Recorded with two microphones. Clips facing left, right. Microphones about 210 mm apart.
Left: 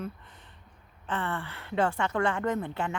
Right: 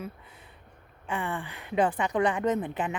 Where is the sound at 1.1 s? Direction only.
15° right (ahead or behind).